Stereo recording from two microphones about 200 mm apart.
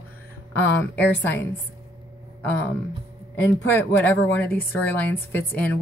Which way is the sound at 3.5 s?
10° left (ahead or behind).